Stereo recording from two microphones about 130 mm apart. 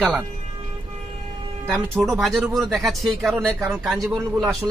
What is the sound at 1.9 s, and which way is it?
Speech, centre (ahead or behind).